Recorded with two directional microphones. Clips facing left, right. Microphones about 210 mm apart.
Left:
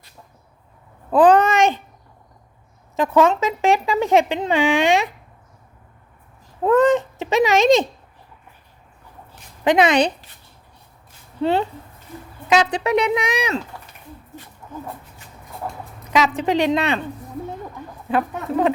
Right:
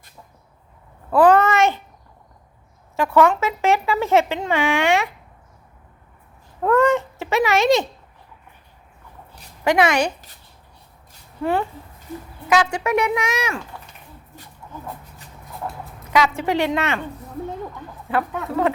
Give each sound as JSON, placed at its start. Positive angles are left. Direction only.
{"t": 1.1, "sound": "a child's voice", "side_deg": 15}
{"t": 2.9, "sound": "a child's voice", "side_deg": 20}
{"t": 6.6, "sound": "a child's voice", "side_deg": 15}
{"t": 9.6, "sound": "speech", "side_deg": 20}
{"t": 11.3, "sound": "speech", "side_deg": 25}
{"t": 12.7, "sound": "a child's voice", "side_deg": 15}
{"t": 16.1, "sound": "a child's voice", "side_deg": 20}
{"t": 18.1, "sound": "a child's voice", "side_deg": 15}